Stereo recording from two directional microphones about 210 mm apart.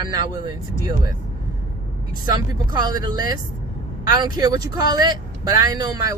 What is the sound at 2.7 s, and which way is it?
Speech, 20° right (ahead or behind).